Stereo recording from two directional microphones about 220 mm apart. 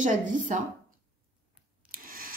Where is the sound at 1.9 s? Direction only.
40° right (ahead or behind).